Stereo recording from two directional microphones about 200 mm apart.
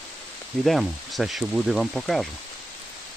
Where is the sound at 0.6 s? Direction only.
Centre (ahead or behind).